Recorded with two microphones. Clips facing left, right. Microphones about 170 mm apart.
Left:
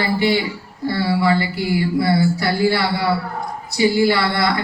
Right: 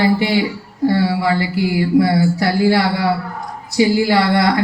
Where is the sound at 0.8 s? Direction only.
90° right.